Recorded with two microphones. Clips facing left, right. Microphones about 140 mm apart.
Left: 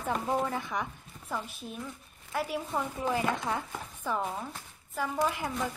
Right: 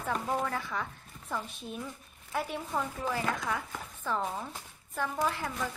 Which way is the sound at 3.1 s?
25° left (ahead or behind).